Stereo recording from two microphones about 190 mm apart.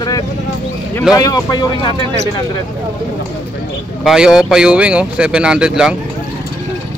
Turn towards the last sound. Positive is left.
turn(degrees=-5)  # may be behind; listen again after turning